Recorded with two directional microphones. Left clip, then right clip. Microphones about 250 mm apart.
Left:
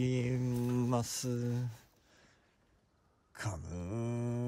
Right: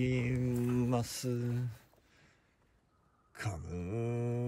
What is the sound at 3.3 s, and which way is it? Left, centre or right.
Speech, centre.